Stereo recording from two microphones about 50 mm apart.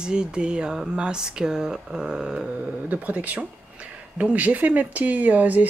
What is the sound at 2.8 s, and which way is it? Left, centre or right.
Speech, right.